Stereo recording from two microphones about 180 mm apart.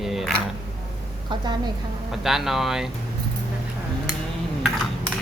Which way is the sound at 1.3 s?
25° right (ahead or behind).